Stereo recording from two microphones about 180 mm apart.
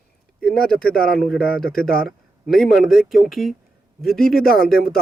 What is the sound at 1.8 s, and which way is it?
Speech, 55° left (ahead or behind).